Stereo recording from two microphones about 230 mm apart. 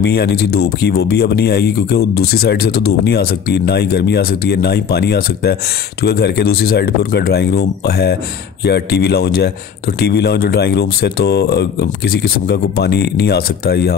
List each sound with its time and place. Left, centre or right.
0.0 s speech: left